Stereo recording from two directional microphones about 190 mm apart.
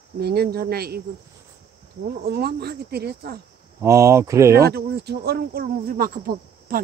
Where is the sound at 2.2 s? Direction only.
60° right (ahead or behind).